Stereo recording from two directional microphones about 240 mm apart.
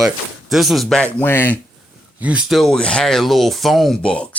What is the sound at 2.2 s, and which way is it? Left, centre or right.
Speech, centre.